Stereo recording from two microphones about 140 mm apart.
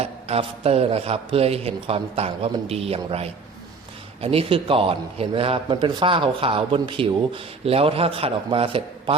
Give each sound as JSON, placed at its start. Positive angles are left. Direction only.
{"t": 0.0, "sound": "a man's voice", "side_deg": -45}